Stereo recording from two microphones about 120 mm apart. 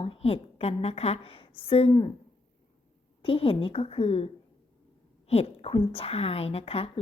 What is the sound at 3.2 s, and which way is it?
A woman's voice, 50° left (ahead or behind).